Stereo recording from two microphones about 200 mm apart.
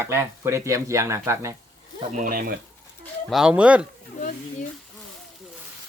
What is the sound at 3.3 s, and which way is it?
Speech, 5° right (ahead or behind).